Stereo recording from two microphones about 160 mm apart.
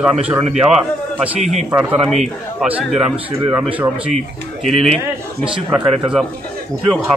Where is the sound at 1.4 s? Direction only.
45° right (ahead or behind).